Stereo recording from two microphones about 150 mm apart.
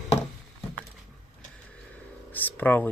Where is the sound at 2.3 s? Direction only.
10° left (ahead or behind).